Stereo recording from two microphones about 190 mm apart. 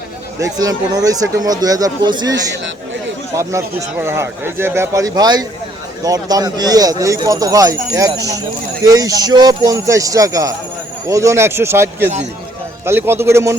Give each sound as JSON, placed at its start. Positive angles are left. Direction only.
{"t": 0.3, "sound": "speech", "side_deg": -20}
{"t": 3.3, "sound": "a man's voice", "side_deg": -15}